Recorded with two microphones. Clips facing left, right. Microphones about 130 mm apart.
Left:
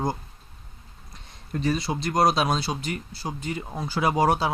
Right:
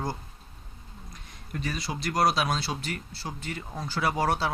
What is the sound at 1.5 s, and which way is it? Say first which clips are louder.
Speech: left 7 dB; 30° left (ahead or behind).